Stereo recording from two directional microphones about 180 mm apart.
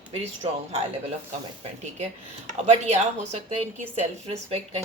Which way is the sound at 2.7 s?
40° right (ahead or behind).